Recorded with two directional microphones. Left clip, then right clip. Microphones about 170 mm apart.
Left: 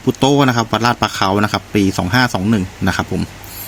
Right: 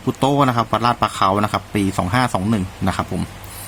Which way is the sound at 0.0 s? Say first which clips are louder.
Left 3 dB; 10° left (ahead or behind).